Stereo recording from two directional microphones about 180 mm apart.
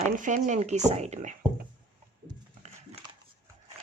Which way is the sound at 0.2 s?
45° right (ahead or behind).